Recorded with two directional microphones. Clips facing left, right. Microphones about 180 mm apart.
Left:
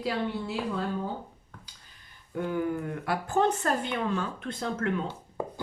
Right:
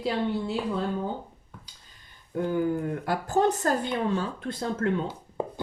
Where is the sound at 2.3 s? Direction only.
30° right (ahead or behind).